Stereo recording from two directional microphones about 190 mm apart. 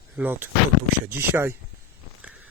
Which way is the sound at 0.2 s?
10° right (ahead or behind).